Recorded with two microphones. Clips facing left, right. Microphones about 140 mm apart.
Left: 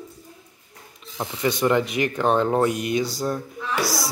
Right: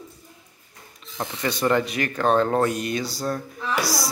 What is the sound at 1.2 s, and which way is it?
A man's voice, 5° left (ahead or behind).